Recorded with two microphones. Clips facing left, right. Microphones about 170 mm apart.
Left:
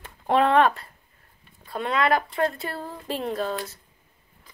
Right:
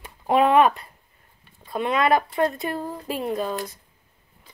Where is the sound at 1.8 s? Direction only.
15° right (ahead or behind).